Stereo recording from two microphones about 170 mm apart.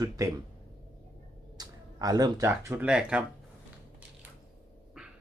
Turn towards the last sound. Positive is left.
turn(degrees=-5)  # may be behind; listen again after turning